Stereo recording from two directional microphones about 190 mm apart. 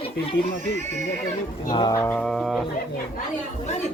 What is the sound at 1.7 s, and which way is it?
Speech, 20° left (ahead or behind).